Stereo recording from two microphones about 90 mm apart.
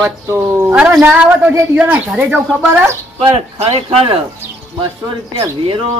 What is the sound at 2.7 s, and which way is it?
Speech, 30° right (ahead or behind).